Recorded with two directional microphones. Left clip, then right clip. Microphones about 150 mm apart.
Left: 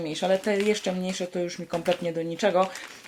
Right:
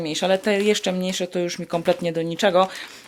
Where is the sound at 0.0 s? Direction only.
35° right (ahead or behind).